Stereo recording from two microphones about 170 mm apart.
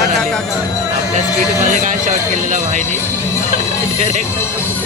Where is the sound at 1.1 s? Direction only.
45° right (ahead or behind).